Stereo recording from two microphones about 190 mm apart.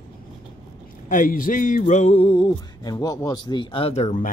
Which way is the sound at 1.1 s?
45° left (ahead or behind).